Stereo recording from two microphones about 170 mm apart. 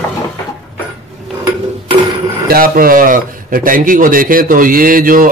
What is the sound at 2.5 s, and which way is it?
Speech, 60° right (ahead or behind).